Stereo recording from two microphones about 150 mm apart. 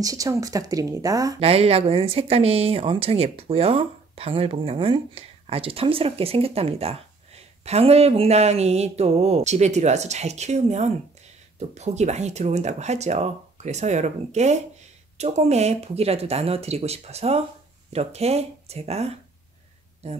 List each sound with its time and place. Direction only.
0.0 s speech: 25° right (ahead or behind)
1.4 s speech: 40° right (ahead or behind)